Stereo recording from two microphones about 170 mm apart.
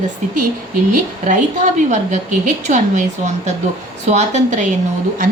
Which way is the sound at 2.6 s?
45° right (ahead or behind).